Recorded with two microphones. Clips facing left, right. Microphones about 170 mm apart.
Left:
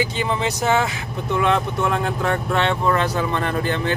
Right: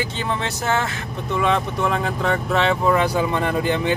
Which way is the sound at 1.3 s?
Centre (ahead or behind).